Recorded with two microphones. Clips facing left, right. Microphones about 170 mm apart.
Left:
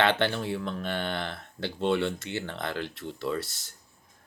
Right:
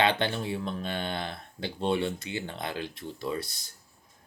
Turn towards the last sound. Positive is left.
turn(degrees=-20)  # may be behind; listen again after turning